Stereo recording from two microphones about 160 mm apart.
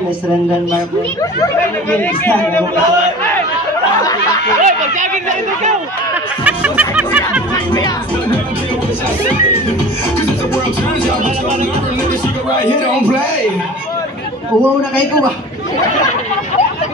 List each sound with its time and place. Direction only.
1.9 s speech: 10° left (ahead or behind)
4.6 s speech: 50° right (ahead or behind)
6.4 s music: 10° right (ahead or behind)